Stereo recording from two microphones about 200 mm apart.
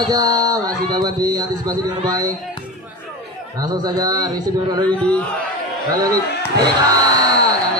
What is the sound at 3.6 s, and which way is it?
Speech, 20° right (ahead or behind).